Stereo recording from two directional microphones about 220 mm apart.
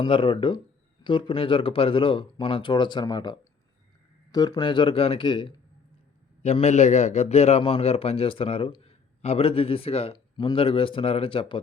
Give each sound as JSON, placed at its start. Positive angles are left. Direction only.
{"t": 0.0, "sound": "a man's voice", "side_deg": 20}